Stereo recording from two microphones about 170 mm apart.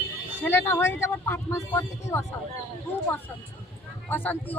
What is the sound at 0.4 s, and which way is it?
Speech, 10° left (ahead or behind).